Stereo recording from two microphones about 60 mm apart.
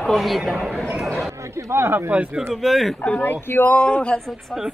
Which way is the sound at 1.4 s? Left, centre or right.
Right.